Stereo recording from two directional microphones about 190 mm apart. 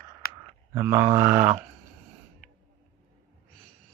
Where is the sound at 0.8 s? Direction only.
15° right (ahead or behind).